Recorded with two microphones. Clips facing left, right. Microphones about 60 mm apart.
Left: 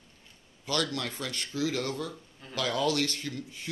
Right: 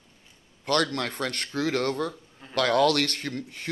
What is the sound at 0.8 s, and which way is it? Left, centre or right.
Speech, right.